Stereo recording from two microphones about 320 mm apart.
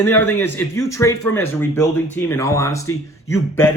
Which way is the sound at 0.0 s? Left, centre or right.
Centre.